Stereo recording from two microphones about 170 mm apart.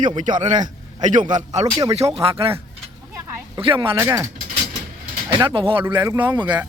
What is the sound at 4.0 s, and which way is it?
Speech, 15° right (ahead or behind).